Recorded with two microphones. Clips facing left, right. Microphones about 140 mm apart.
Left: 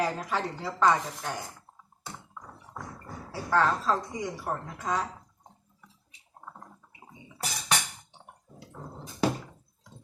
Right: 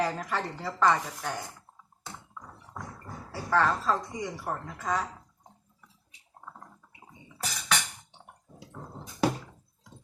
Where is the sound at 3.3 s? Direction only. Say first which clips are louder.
Left 1 dB; centre (ahead or behind).